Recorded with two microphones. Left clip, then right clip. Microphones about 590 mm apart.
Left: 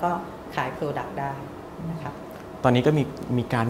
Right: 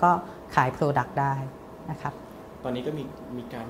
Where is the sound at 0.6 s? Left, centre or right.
Right.